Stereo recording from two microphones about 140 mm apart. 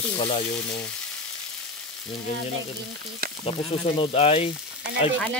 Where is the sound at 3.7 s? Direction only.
45° left (ahead or behind).